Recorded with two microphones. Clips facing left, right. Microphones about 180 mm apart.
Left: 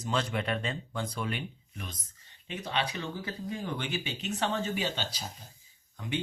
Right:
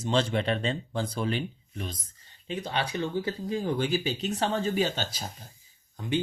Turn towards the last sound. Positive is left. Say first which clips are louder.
# right 5 dB
turn(degrees=-30)  # may be behind; listen again after turning